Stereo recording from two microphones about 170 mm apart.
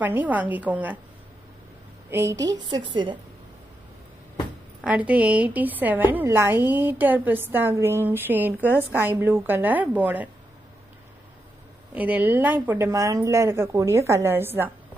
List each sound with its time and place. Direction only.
0.0 s a woman's voice: 10° right (ahead or behind)
2.0 s a woman's voice: 15° right (ahead or behind)
4.8 s a woman's voice: 10° right (ahead or behind)
11.9 s a woman's voice: 10° right (ahead or behind)